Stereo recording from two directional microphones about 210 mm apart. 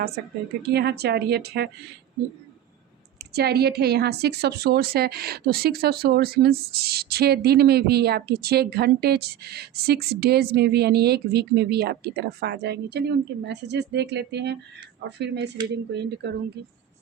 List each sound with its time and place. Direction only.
0.7 s a woman's voice: 50° right (ahead or behind)
3.2 s a woman's voice: 50° right (ahead or behind)